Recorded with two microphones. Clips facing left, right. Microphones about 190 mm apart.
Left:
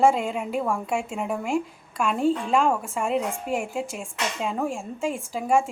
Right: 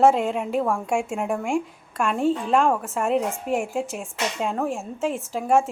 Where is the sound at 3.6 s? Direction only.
45° right (ahead or behind).